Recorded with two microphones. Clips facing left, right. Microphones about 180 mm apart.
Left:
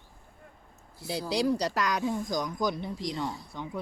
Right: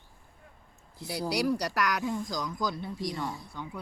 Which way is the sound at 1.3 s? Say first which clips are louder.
Left 2 dB; 20° left (ahead or behind).